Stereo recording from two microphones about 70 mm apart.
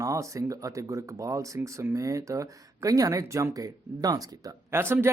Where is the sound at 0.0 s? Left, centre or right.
Right.